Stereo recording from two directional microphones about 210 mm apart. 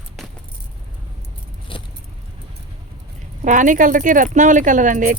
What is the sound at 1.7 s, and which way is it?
Keys jangling, 25° left (ahead or behind).